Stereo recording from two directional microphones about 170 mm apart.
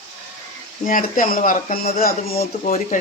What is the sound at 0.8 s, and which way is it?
Speech, 55° left (ahead or behind).